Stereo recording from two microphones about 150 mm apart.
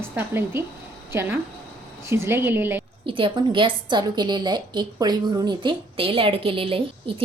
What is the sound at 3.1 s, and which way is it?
A woman's voice, 35° right (ahead or behind).